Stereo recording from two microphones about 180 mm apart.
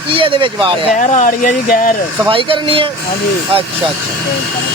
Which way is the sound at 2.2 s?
30° right (ahead or behind).